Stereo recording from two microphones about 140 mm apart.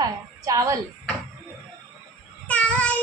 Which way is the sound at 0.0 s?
25° right (ahead or behind).